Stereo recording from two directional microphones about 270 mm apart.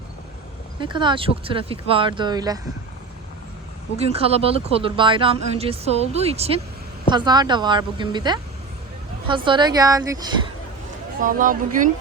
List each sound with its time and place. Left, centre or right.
0.8 s speech: centre
3.9 s speech: right
11.2 s speech: right